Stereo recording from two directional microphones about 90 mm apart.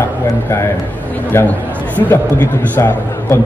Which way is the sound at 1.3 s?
25° left (ahead or behind).